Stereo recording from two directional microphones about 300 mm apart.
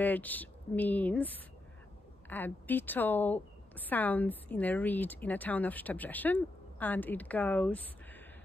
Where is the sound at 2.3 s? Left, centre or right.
Centre.